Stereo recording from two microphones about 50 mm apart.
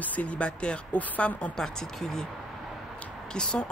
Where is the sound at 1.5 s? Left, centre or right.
Centre.